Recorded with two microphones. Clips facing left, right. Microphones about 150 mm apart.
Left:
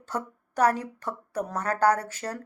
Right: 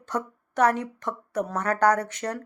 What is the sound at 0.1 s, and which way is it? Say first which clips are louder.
Speech: right 3 dB; 35° left (ahead or behind).